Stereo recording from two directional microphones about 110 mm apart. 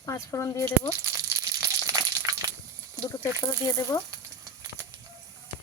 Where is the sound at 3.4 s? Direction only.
30° left (ahead or behind).